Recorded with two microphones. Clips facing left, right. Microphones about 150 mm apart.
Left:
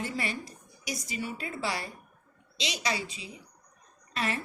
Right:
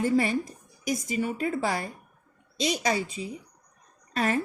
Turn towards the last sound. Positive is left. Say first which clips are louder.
# right 6 dB
turn(degrees=-45)  # may be behind; listen again after turning